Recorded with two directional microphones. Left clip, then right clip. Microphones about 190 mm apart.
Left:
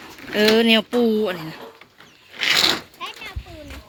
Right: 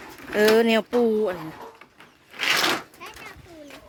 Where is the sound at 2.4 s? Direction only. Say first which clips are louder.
Left 4 dB; 40° right (ahead or behind).